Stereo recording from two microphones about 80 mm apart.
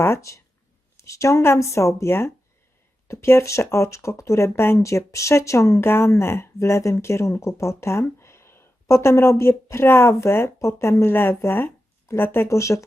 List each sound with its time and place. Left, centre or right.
0.0 s speech: left